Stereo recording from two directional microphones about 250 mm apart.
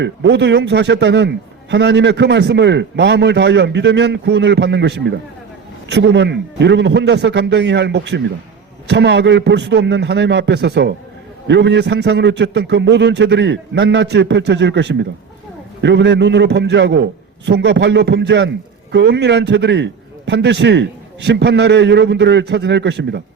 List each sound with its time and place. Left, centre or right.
0.0 s a man's voice: right